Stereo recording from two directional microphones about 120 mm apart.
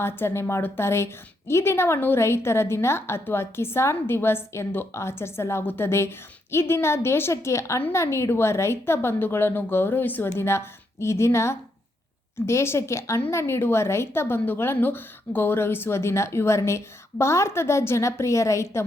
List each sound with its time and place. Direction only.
0.0 s a woman's voice: 20° left (ahead or behind)